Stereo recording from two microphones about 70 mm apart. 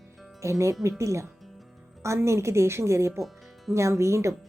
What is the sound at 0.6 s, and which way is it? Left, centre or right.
A woman's voice, right.